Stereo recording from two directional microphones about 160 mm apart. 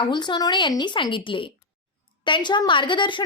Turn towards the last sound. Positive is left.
turn(degrees=30)  # may be behind; listen again after turning